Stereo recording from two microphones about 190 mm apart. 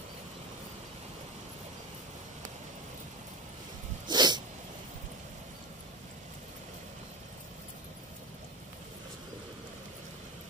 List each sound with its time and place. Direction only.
4.1 s dog: 20° right (ahead or behind)